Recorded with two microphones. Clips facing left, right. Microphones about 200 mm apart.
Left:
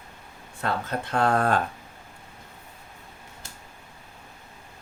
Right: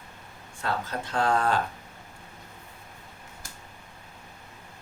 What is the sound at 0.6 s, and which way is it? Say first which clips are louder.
Speech: left 2 dB; 60° left (ahead or behind).